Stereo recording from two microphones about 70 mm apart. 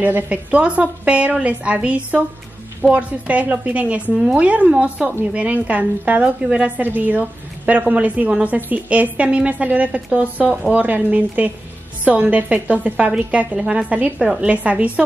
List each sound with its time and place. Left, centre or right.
0.0 s a woman's voice: right
4.1 s speech: centre
4.4 s a woman's voice: centre